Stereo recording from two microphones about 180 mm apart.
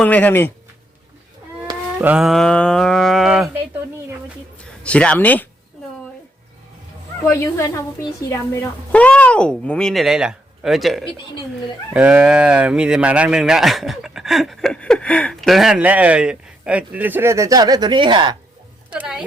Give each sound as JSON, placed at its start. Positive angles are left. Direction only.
{"t": 0.0, "sound": "a woman's voice", "side_deg": 10}
{"t": 2.0, "sound": "speech", "side_deg": -5}
{"t": 4.8, "sound": "a woman's voice", "side_deg": 5}
{"t": 7.3, "sound": "a woman's voice", "side_deg": 15}
{"t": 18.9, "sound": "a woman's voice", "side_deg": -5}